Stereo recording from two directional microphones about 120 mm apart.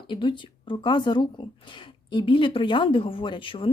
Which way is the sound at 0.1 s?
45° left (ahead or behind).